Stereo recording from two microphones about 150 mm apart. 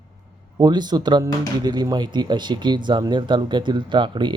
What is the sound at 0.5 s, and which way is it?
Speech, 25° right (ahead or behind).